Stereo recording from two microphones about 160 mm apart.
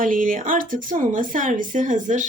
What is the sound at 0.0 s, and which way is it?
A woman's voice, 60° right (ahead or behind).